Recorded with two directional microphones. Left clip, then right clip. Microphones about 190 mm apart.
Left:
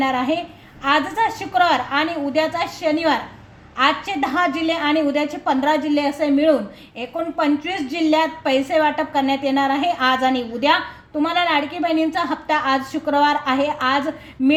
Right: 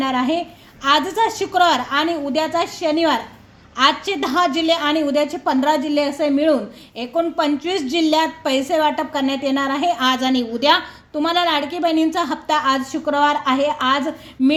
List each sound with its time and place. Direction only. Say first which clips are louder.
0.0 s a woman's voice: even; 40° right (ahead or behind)